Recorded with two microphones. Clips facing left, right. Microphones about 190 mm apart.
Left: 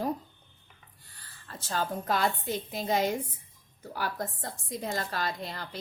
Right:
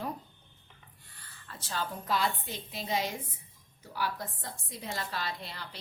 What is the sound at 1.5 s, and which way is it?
A woman's voice, 45° left (ahead or behind).